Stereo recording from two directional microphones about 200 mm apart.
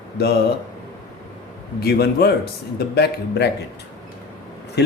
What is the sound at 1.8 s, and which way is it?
Speech, 50° left (ahead or behind).